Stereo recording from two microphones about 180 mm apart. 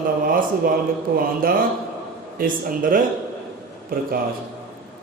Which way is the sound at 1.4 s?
50° right (ahead or behind).